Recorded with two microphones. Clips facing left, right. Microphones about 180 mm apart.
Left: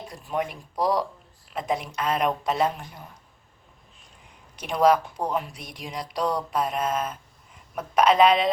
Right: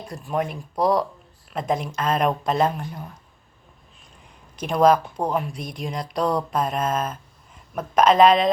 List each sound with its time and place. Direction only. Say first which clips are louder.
0.1 s speech: right 3 dB; 45° right (ahead or behind)
4.7 s speech: right 3 dB; 45° right (ahead or behind)